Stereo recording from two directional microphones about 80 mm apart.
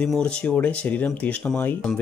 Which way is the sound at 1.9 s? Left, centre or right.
Centre.